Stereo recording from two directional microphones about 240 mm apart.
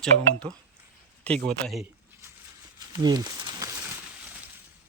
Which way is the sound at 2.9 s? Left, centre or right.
Centre.